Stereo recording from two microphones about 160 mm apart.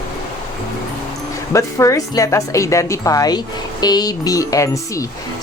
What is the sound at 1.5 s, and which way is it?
Speech, 20° left (ahead or behind).